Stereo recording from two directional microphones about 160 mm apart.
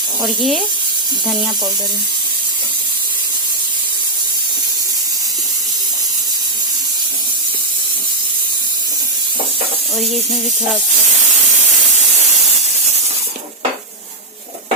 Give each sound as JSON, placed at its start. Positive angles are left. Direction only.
{"t": 0.3, "sound": "speech", "side_deg": 0}